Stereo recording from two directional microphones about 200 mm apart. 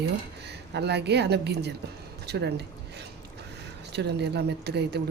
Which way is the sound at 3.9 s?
55° right (ahead or behind).